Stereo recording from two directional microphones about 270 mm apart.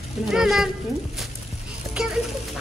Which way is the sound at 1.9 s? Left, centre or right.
Centre.